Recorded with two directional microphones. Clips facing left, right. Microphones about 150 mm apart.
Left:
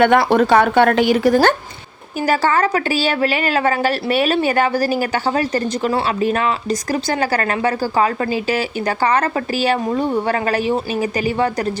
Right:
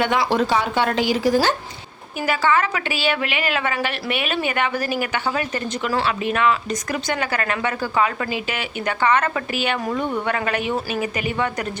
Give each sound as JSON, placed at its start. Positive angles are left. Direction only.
{"t": 0.0, "sound": "speech", "side_deg": 55}
{"t": 2.2, "sound": "a woman's voice", "side_deg": 40}